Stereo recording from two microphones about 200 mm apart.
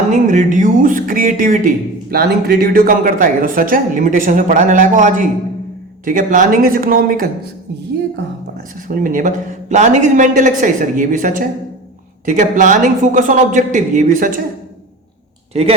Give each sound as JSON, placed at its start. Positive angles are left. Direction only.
{"t": 0.1, "sound": "speech", "side_deg": -40}
{"t": 8.9, "sound": "speech", "side_deg": -45}